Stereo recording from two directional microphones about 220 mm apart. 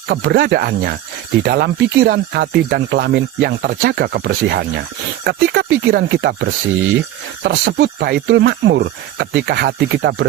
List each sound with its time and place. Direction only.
0.1 s speech: 50° right (ahead or behind)